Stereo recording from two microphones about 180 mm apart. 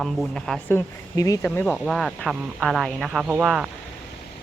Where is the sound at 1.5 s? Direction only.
5° left (ahead or behind).